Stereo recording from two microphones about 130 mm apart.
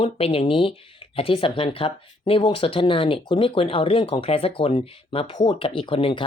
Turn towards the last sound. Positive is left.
turn(degrees=45)  # may be behind; listen again after turning